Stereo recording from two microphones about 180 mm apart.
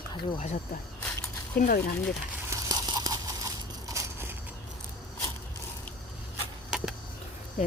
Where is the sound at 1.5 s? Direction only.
55° left (ahead or behind).